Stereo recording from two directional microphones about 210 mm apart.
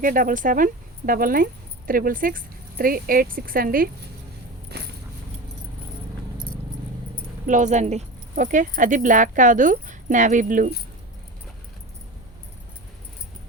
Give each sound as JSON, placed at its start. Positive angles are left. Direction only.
{"t": 0.0, "sound": "speech", "side_deg": -40}
{"t": 4.7, "sound": "walk", "side_deg": -50}
{"t": 7.4, "sound": "speech", "side_deg": -35}